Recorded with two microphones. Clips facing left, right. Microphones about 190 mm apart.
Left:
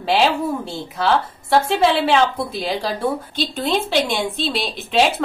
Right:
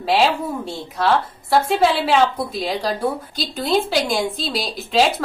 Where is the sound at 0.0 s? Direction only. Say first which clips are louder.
Even; centre (ahead or behind).